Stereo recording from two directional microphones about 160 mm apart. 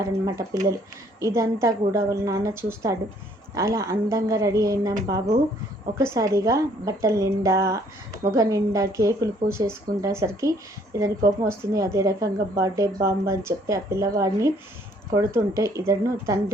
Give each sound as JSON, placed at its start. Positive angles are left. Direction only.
{"t": 0.0, "sound": "speech", "side_deg": -20}